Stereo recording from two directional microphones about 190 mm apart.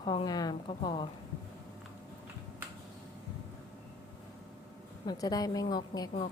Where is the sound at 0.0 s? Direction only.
25° left (ahead or behind).